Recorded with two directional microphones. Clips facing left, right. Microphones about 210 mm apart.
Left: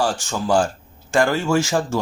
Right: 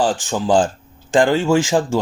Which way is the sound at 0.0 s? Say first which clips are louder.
Right 3 dB; 15° right (ahead or behind).